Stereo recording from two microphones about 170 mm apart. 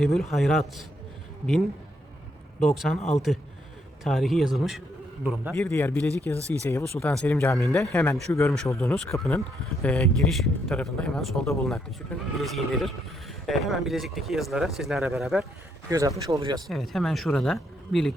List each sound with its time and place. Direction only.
0.0 s speech: centre (ahead or behind)
2.6 s speech: centre (ahead or behind)
5.7 s speech: 15° left (ahead or behind)
7.1 s speech: 5° left (ahead or behind)
7.8 s speech: 15° left (ahead or behind); by 15.4 s 5° right (ahead or behind)
15.9 s speech: 20° right (ahead or behind)
16.3 s speech: 30° right (ahead or behind)
16.6 s speech: centre (ahead or behind)